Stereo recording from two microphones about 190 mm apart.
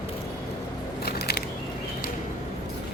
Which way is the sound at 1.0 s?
55° left (ahead or behind).